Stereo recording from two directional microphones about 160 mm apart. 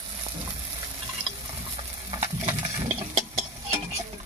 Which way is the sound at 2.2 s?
45° right (ahead or behind).